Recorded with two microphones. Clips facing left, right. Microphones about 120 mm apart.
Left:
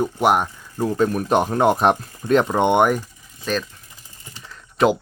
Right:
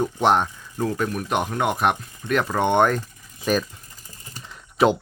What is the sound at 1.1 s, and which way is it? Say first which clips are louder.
Speech: left 5 dB; 35° left (ahead or behind).